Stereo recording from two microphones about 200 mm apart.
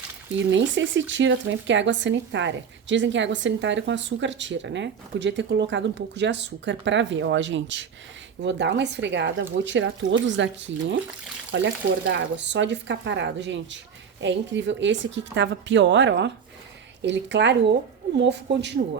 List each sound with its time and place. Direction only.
0.5 s speech: 65° right (ahead or behind)
18.8 s speech: 50° right (ahead or behind)